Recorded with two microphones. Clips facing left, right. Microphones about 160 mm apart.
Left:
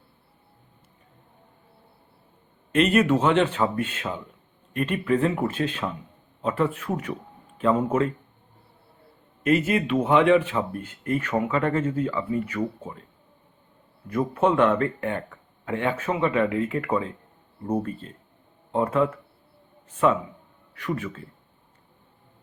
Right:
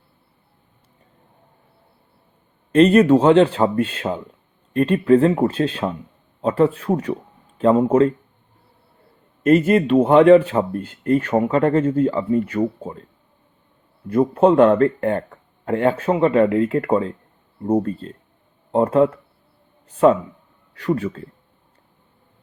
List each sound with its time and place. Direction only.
2.7 s a man's voice: 35° right (ahead or behind)
9.4 s a man's voice: 45° right (ahead or behind)
14.1 s a man's voice: 30° right (ahead or behind)
20.8 s a man's voice: 35° right (ahead or behind)